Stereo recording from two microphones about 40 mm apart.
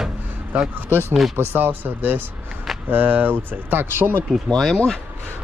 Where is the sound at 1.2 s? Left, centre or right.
Centre.